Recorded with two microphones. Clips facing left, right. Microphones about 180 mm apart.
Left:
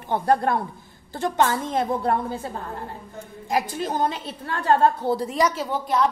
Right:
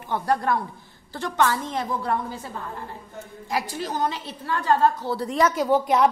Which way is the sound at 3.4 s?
45° left (ahead or behind).